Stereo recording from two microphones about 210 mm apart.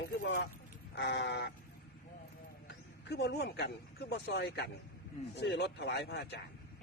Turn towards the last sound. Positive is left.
turn(degrees=55)  # may be behind; listen again after turning